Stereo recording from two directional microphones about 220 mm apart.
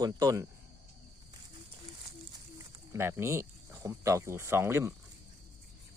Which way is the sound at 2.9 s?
10° right (ahead or behind).